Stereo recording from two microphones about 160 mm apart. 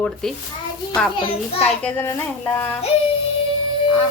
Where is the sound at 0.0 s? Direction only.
5° left (ahead or behind).